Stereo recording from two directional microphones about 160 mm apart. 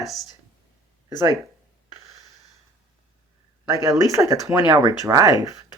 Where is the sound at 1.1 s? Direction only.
20° right (ahead or behind).